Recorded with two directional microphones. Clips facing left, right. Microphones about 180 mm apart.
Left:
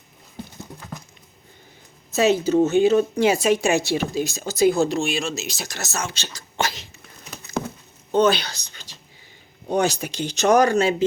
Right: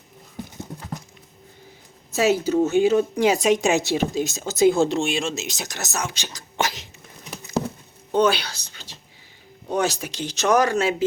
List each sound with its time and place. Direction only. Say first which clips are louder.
2.1 s speech: left 2 dB; 10° right (ahead or behind)
8.1 s speech: left 1 dB; 10° right (ahead or behind)